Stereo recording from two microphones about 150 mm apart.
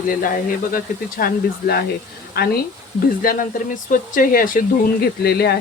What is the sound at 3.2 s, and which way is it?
Speech, 65° left (ahead or behind).